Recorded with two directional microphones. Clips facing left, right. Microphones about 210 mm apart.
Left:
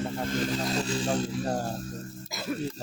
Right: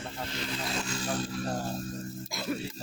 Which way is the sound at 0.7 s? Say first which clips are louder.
Left 5 dB; 35° left (ahead or behind).